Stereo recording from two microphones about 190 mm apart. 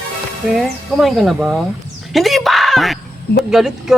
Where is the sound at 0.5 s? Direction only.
Centre (ahead or behind).